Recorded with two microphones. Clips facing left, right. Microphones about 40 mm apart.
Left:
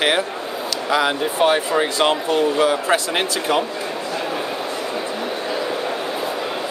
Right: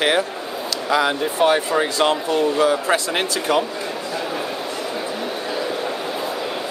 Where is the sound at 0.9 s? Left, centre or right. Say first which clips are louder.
Even; left.